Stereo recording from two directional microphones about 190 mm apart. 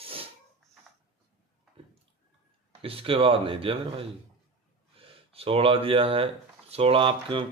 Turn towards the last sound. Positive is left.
turn(degrees=-25)  # may be behind; listen again after turning